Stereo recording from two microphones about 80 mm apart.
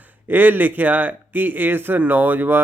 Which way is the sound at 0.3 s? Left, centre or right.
Right.